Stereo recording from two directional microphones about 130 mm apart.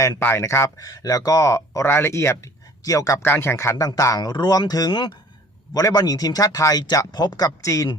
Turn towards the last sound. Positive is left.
turn(degrees=25)  # may be behind; listen again after turning